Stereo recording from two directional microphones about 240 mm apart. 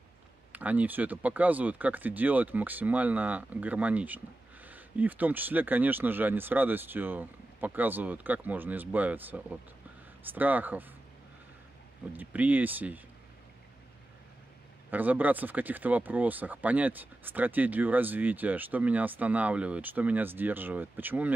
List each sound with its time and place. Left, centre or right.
0.5 s speech: centre
12.1 s speech: centre
14.9 s speech: centre